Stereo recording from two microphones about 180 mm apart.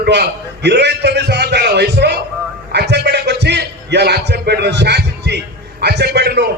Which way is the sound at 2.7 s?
65° right (ahead or behind).